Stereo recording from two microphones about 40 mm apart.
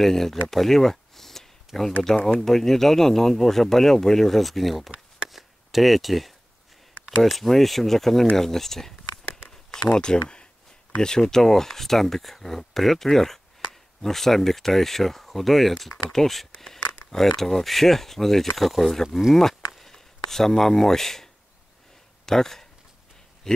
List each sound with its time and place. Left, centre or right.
0.0 s speech: centre
5.3 s chop: centre
7.2 s speech: centre
8.4 s a sound: centre
9.8 s speech: left
10.2 s a sound: left
11.0 s speech: centre